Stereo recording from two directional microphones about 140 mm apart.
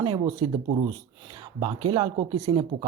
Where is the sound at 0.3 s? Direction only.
35° right (ahead or behind).